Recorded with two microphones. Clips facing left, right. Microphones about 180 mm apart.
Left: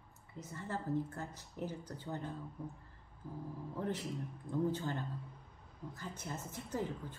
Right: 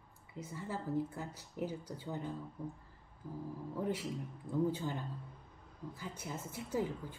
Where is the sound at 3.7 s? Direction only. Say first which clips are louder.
Right 2 dB; 10° right (ahead or behind).